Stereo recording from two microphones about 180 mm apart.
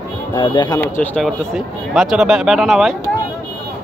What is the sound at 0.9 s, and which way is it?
Speech, 5° left (ahead or behind).